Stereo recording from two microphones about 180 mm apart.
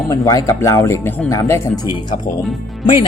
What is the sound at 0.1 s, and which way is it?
Speech, 20° left (ahead or behind).